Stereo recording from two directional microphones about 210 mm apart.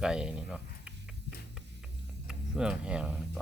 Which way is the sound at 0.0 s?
5° right (ahead or behind).